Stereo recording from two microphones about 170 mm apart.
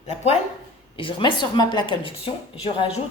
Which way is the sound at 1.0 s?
30° left (ahead or behind).